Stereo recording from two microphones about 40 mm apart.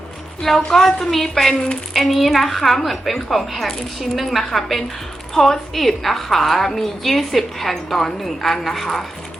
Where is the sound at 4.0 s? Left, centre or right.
Centre.